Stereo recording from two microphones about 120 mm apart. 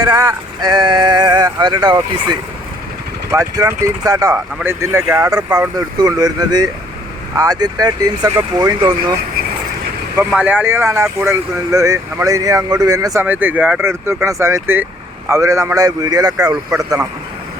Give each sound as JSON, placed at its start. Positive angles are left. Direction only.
{"t": 0.0, "sound": "speech", "side_deg": -30}
{"t": 3.3, "sound": "speech", "side_deg": -25}
{"t": 4.4, "sound": "speech", "side_deg": -20}
{"t": 10.3, "sound": "speech", "side_deg": -15}
{"t": 13.2, "sound": "speech", "side_deg": -15}
{"t": 13.8, "sound": "speech", "side_deg": -20}